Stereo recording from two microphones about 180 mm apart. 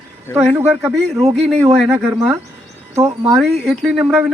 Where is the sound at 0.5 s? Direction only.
10° right (ahead or behind).